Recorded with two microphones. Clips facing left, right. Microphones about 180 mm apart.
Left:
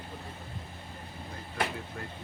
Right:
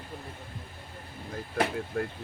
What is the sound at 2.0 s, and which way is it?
Speech, 50° right (ahead or behind).